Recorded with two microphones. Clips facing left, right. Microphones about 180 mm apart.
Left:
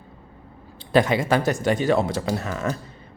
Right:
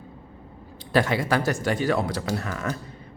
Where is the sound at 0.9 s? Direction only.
20° left (ahead or behind).